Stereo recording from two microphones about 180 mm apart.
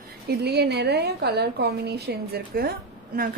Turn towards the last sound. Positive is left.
turn(degrees=-55)  # may be behind; listen again after turning